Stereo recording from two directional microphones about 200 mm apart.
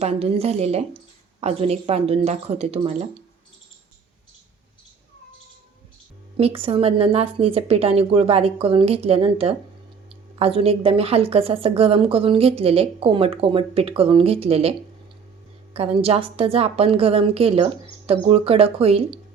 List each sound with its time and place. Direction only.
0.0 s speech: 30° right (ahead or behind)
6.3 s a woman's voice: 30° right (ahead or behind)